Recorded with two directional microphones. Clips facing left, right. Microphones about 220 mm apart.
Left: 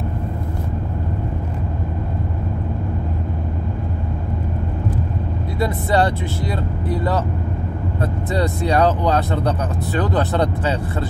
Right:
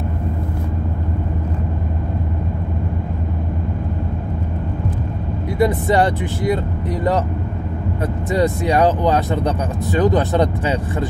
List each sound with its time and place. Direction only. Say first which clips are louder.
5.6 s speech: right 3 dB; 15° right (ahead or behind)
8.3 s speech: right 3 dB; 15° right (ahead or behind)